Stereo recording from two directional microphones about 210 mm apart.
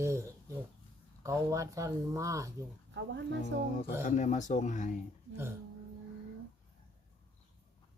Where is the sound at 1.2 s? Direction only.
15° right (ahead or behind).